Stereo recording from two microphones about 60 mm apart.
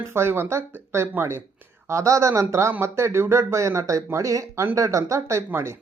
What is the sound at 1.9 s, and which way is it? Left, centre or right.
Speech, right.